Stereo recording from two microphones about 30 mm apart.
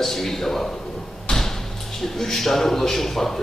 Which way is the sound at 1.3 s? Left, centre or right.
Centre.